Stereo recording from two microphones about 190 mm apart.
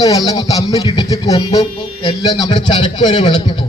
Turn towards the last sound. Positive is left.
turn(degrees=25)  # may be behind; listen again after turning